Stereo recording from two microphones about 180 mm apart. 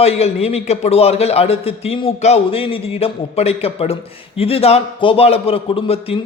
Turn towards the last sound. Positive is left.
turn(degrees=30)  # may be behind; listen again after turning